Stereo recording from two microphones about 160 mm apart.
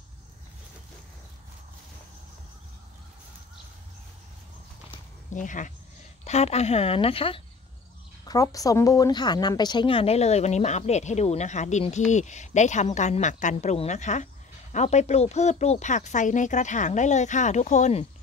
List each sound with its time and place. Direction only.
5.3 s a woman's voice: 50° left (ahead or behind); by 7.4 s 35° left (ahead or behind)
8.3 s a woman's voice: 20° left (ahead or behind); by 18.0 s 45° left (ahead or behind)